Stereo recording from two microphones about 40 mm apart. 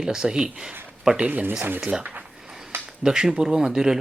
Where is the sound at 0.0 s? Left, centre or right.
Centre.